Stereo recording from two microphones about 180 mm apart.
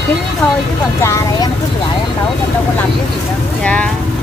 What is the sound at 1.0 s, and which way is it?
Speech, 15° left (ahead or behind).